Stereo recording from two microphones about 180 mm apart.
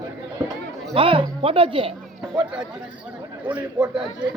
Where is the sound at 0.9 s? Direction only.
30° right (ahead or behind).